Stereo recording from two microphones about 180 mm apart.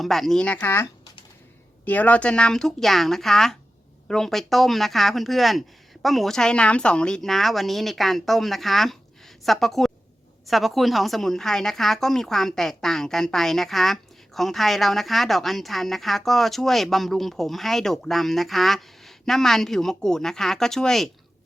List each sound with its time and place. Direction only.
0.0 s a woman's voice: centre (ahead or behind)